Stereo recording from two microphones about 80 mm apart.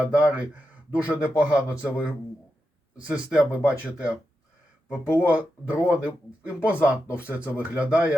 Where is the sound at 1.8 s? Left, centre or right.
Centre.